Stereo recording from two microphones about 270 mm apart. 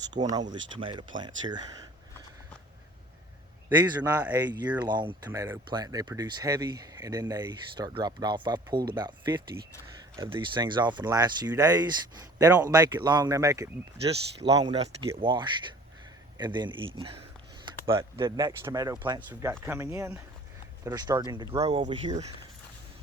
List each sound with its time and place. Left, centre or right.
0.1 s speech: centre
3.7 s speech: centre
4.9 s speech: centre